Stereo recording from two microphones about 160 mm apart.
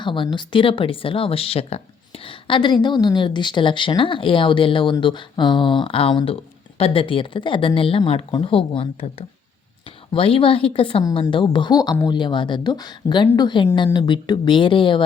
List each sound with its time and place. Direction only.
0.0 s speech: 30° left (ahead or behind)